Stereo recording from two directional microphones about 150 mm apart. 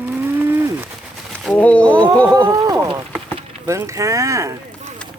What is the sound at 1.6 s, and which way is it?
Speech, 10° left (ahead or behind).